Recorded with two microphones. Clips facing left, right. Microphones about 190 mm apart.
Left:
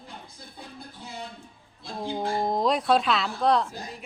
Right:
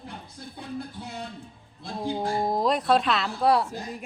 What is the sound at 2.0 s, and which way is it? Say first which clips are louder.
Speech: right 1 dB; 5° right (ahead or behind).